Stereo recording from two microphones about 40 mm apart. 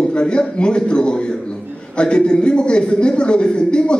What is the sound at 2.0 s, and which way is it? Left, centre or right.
A man's voice, left.